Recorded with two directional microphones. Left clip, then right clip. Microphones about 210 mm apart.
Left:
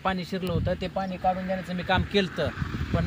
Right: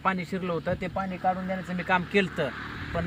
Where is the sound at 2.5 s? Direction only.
60° left (ahead or behind).